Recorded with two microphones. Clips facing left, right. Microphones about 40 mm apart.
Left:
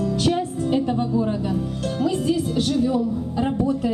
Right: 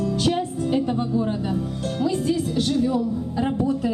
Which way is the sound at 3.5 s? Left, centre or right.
Left.